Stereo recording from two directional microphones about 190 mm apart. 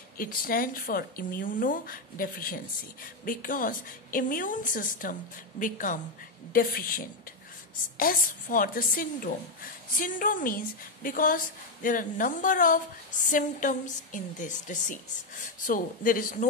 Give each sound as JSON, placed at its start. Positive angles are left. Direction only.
{"t": 0.2, "sound": "a woman's voice", "side_deg": 50}